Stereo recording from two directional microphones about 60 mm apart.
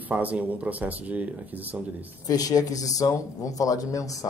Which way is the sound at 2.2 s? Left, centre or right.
Left.